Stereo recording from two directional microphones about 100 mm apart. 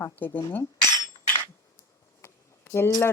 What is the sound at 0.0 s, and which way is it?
Speech, 20° left (ahead or behind).